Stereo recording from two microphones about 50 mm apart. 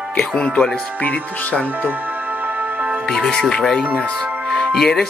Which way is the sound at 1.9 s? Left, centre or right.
Right.